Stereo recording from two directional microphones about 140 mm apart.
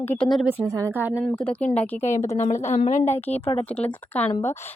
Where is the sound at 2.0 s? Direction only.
55° left (ahead or behind).